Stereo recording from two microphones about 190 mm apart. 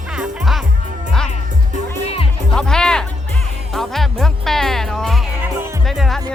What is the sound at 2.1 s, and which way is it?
Music, 30° left (ahead or behind).